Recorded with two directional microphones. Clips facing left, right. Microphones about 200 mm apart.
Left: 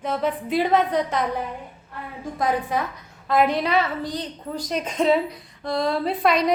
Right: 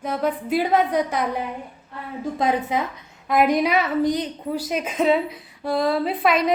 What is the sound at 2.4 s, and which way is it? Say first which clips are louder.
A woman's voice: right 1 dB; 20° right (ahead or behind).